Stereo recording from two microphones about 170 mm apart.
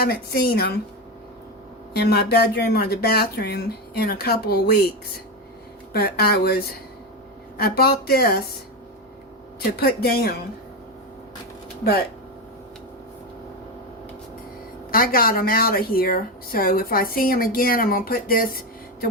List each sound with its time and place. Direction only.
0.0 s speech: 70° left (ahead or behind)
1.9 s speech: 65° left (ahead or behind)
5.9 s speech: 65° left (ahead or behind)
9.8 s speech: 65° left (ahead or behind)
11.8 s speech: 65° left (ahead or behind)
14.8 s speech: 60° left (ahead or behind)